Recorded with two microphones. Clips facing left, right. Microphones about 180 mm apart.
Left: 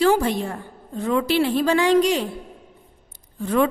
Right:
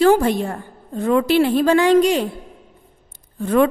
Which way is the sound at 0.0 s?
50° right (ahead or behind).